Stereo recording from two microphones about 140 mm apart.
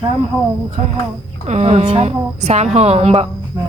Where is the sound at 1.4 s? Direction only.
50° right (ahead or behind).